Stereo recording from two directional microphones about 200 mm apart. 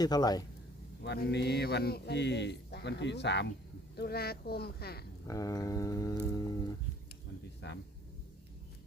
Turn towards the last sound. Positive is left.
turn(degrees=55)  # may be behind; listen again after turning